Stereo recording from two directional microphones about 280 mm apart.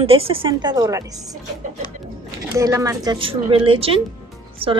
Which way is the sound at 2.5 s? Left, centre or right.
Centre.